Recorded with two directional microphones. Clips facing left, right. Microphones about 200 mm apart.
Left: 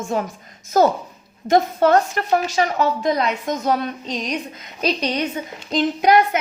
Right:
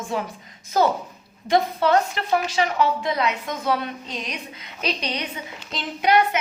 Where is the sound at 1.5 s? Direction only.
45° left (ahead or behind).